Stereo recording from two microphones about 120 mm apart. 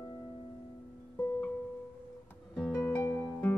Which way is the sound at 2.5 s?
10° left (ahead or behind).